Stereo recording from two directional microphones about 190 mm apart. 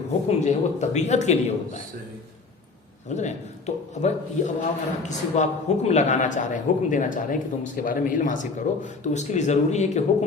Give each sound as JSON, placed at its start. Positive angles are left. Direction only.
{"t": 0.3, "sound": "a man's voice", "side_deg": 35}
{"t": 3.1, "sound": "a man's voice", "side_deg": 40}